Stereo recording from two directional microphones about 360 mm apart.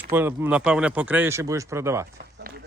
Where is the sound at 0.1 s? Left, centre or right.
Centre.